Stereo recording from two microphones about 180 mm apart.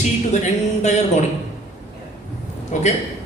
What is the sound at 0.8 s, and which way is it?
Speech, 40° left (ahead or behind).